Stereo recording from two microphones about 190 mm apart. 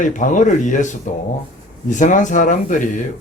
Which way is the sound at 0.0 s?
40° left (ahead or behind).